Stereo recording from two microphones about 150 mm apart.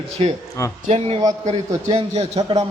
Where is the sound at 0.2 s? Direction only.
40° right (ahead or behind).